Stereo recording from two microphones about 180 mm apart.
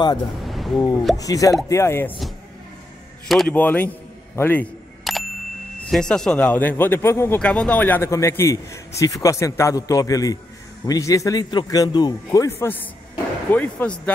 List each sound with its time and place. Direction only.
0.4 s a sound: centre (ahead or behind)
1.1 s a man's voice: 20° left (ahead or behind)
3.3 s speech: 5° left (ahead or behind)
5.1 s bicycle bell: centre (ahead or behind)
5.9 s a man's voice: 5° left (ahead or behind)